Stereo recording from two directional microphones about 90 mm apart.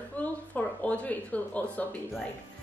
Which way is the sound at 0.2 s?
15° left (ahead or behind).